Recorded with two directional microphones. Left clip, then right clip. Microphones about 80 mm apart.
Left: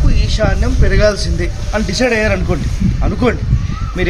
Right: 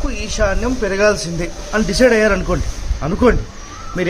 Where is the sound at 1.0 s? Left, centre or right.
Right.